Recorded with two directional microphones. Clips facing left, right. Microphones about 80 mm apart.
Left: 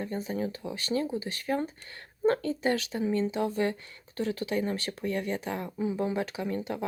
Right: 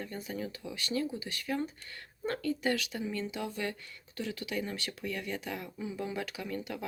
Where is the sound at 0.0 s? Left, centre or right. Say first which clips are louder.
Left 6 dB; left.